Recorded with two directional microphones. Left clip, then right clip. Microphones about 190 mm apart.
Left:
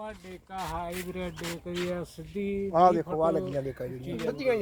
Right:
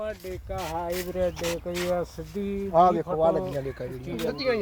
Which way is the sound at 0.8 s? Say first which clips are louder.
Right 8 dB; 50° left (ahead or behind).